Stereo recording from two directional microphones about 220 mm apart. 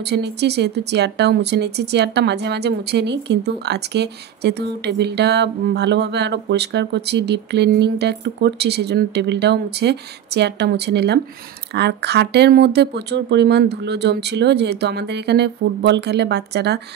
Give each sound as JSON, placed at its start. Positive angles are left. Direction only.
{"t": 0.0, "sound": "speech", "side_deg": -50}